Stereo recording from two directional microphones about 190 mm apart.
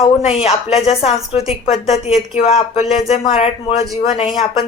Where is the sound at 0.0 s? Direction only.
30° left (ahead or behind).